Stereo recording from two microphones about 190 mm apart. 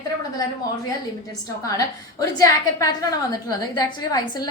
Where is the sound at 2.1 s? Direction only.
20° left (ahead or behind).